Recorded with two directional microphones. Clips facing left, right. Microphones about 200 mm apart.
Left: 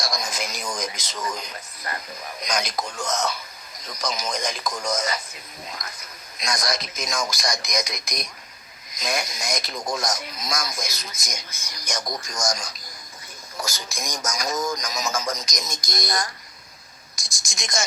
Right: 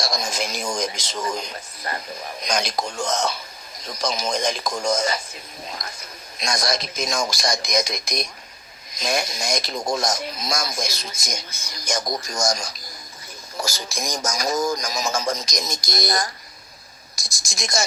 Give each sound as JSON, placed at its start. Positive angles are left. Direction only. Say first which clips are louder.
{"t": 0.0, "sound": "speech", "louder": "right 3 dB", "side_deg": -25}
{"t": 17.6, "sound": "speech", "louder": "right 3 dB", "side_deg": -35}